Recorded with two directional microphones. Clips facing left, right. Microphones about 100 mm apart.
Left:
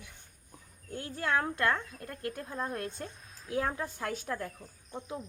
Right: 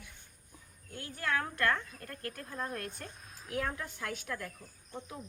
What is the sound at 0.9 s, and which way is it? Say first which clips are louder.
A woman's voice: left 4 dB; 25° left (ahead or behind).